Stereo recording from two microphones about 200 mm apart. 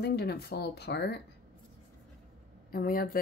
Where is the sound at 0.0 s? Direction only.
55° left (ahead or behind).